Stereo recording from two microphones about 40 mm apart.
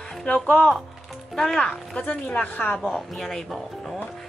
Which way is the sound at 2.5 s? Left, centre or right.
Left.